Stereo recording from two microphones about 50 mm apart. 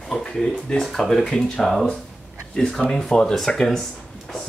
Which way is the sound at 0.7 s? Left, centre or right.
Centre.